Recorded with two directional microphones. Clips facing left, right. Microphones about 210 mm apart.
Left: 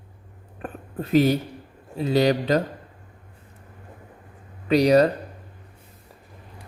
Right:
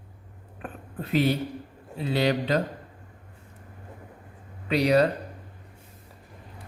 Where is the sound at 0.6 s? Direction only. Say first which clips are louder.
Left 4 dB; 45° left (ahead or behind).